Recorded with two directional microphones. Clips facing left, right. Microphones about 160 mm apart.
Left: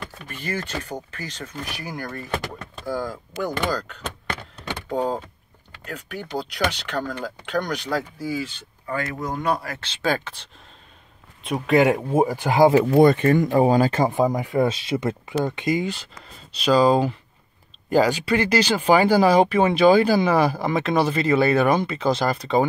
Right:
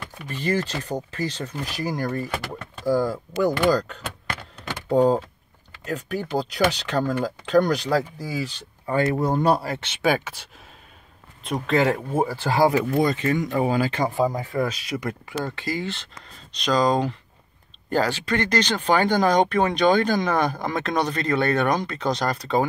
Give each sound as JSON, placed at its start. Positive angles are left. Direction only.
{"t": 0.3, "sound": "speech", "side_deg": -35}
{"t": 7.5, "sound": "speech", "side_deg": -35}
{"t": 11.4, "sound": "speech", "side_deg": 10}
{"t": 12.9, "sound": "speech", "side_deg": 55}
{"t": 13.6, "sound": "speech", "side_deg": 40}
{"t": 14.0, "sound": "speech", "side_deg": 20}